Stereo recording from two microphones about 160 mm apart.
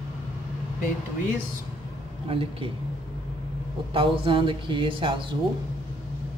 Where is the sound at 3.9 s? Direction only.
35° right (ahead or behind).